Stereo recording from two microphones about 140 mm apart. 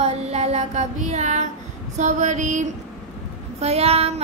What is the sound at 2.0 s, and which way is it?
Child singing, 60° right (ahead or behind).